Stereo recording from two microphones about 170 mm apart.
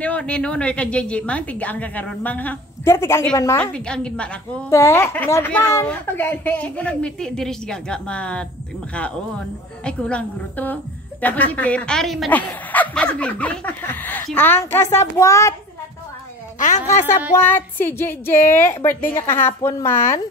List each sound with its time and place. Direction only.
0.0 s a woman's voice: 5° left (ahead or behind)
16.5 s a woman's voice: 45° left (ahead or behind)
17.4 s a woman's voice: 10° left (ahead or behind)